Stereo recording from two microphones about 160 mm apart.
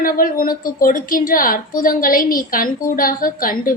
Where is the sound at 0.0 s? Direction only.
60° left (ahead or behind).